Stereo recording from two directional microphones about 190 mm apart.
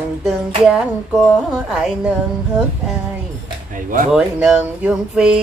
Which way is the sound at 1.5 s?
Centre (ahead or behind).